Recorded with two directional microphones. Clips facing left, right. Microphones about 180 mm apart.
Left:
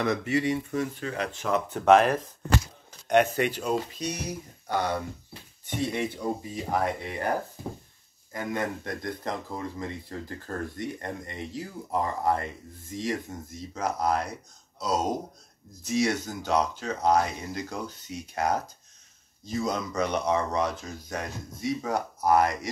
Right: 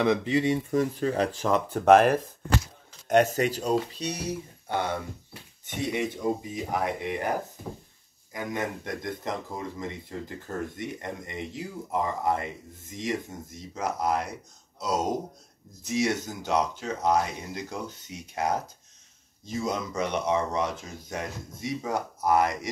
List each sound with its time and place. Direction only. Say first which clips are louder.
0.0 s speech: right 2 dB; 20° right (ahead or behind)
0.7 s speech: right 5 dB; 35° right (ahead or behind); by 14.2 s 20° right (ahead or behind)
15.8 s speech: left 1 dB; 20° right (ahead or behind)
19.7 s speech: even; 20° right (ahead or behind)